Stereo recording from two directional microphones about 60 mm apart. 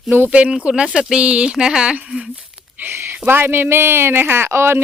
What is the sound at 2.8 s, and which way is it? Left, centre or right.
Speech, right.